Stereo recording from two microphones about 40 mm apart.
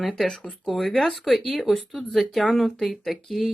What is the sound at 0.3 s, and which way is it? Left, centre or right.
Speech, left.